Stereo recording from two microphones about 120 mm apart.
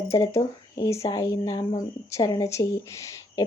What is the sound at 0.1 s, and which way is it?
Speech, 25° left (ahead or behind).